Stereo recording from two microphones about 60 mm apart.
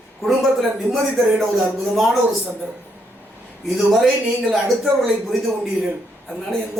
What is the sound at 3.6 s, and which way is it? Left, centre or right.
Speech, centre.